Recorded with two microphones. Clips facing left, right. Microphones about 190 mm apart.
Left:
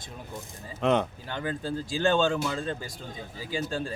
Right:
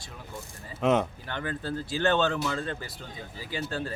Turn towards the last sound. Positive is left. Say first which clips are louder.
# left 2 dB
turn(degrees=15)  # may be behind; listen again after turning